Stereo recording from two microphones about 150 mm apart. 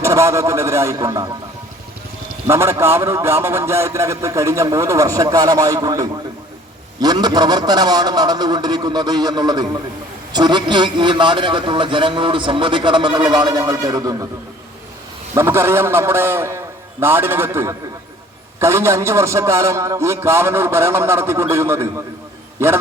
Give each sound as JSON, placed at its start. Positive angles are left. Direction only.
{"t": 0.0, "sound": "a man's voice", "side_deg": -20}
{"t": 2.5, "sound": "a man's voice", "side_deg": -15}
{"t": 15.4, "sound": "a man's voice", "side_deg": -15}